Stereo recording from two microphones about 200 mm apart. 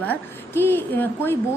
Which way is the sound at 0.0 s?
10° left (ahead or behind).